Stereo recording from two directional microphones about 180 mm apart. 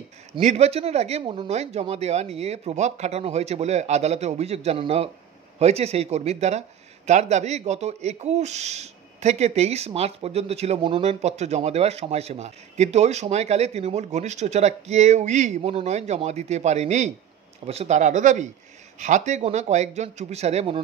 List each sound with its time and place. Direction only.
0.4 s speech: 40° right (ahead or behind)